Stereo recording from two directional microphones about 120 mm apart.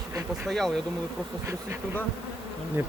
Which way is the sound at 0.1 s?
25° right (ahead or behind).